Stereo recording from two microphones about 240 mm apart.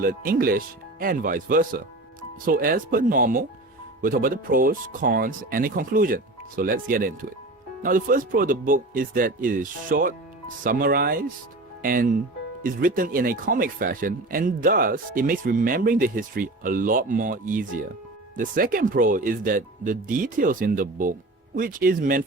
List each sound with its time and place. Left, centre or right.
0.0 s speech: right